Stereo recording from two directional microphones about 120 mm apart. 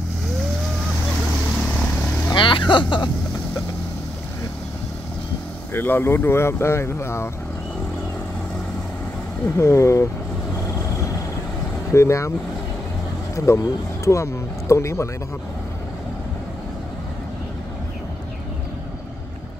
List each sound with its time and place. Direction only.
2.3 s speech: 45° left (ahead or behind)
5.7 s speech: 15° left (ahead or behind)
9.6 s speech: 25° left (ahead or behind)
11.9 s speech: 25° left (ahead or behind)
13.5 s speech: 25° left (ahead or behind)